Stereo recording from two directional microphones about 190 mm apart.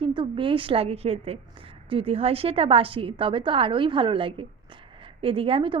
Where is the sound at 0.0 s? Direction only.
25° right (ahead or behind).